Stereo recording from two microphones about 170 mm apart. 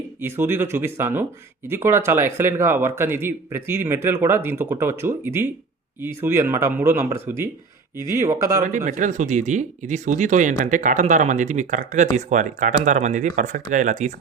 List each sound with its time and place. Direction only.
0.2 s speech: 15° right (ahead or behind)
8.6 s speech: 45° right (ahead or behind)